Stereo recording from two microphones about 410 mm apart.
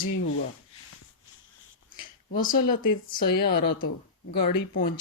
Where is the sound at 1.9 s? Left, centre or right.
Centre.